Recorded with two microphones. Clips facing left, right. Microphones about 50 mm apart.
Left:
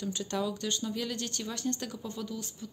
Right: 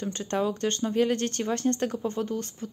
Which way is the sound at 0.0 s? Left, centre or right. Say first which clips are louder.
Right 5 dB; right.